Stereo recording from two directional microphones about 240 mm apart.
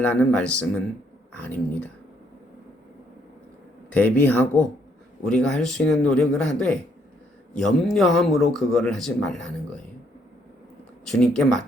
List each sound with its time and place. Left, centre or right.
0.0 s speech: centre
3.8 s speech: centre
11.1 s speech: centre